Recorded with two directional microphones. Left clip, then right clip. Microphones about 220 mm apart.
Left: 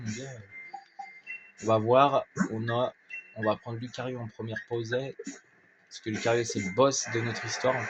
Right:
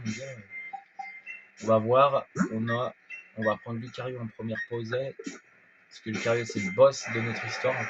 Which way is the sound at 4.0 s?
50° left (ahead or behind).